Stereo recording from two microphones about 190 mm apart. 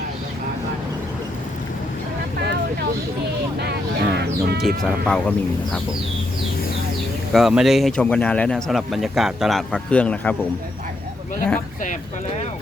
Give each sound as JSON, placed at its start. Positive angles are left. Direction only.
{"t": 3.6, "sound": "a sound", "side_deg": -60}
{"t": 4.8, "sound": "speech", "side_deg": 0}
{"t": 7.3, "sound": "speech", "side_deg": 0}